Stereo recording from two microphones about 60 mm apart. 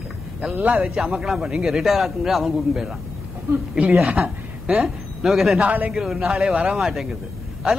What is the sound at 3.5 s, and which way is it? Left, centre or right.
Speech, right.